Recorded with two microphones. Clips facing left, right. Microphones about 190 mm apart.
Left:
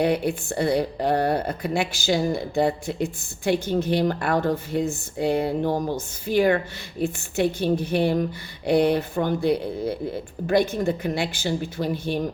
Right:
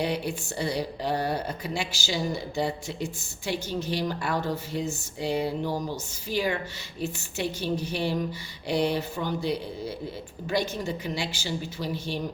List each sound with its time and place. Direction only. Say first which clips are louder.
0.0 s speech: left 7 dB; 55° left (ahead or behind)